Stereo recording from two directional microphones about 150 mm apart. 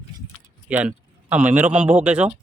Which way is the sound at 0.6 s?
10° right (ahead or behind).